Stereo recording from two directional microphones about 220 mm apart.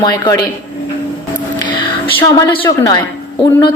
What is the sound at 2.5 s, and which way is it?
Speech, 20° left (ahead or behind).